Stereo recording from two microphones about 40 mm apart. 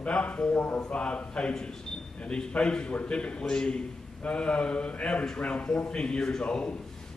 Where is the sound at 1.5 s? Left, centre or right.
Centre.